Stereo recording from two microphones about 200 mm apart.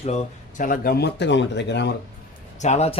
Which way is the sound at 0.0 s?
35° left (ahead or behind).